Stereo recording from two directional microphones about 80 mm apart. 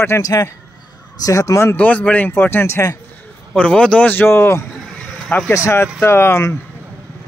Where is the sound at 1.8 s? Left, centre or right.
Centre.